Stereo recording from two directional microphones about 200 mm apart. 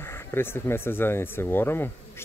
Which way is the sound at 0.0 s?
10° left (ahead or behind).